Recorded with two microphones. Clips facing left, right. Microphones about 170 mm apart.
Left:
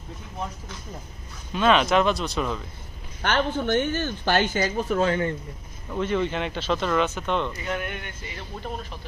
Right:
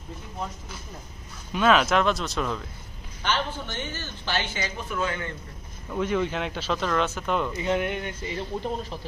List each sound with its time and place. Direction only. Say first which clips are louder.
1.5 s speech: left 1 dB; 5° right (ahead or behind)
3.2 s speech: left 4 dB; 55° left (ahead or behind); by 5.2 s 40° left (ahead or behind)
5.9 s speech: left 1 dB; 5° right (ahead or behind)
7.5 s speech: right 5 dB; 25° right (ahead or behind)